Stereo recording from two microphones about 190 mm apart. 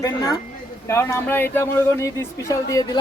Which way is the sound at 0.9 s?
15° left (ahead or behind).